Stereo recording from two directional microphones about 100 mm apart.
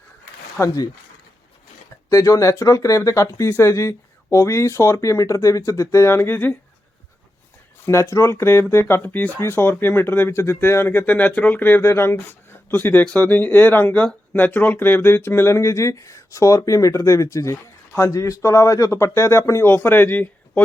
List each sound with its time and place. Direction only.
0.6 s speech: 35° left (ahead or behind)
2.0 s speech: 35° left (ahead or behind); by 6.6 s 20° left (ahead or behind)
7.9 s speech: 30° left (ahead or behind)